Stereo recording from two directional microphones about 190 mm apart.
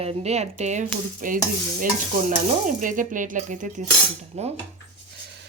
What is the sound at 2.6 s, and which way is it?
Speech, 45° right (ahead or behind).